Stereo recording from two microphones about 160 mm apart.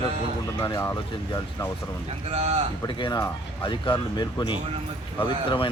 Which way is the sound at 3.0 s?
20° left (ahead or behind).